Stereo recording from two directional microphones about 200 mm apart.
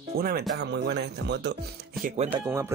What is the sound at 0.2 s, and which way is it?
Speech, 45° right (ahead or behind).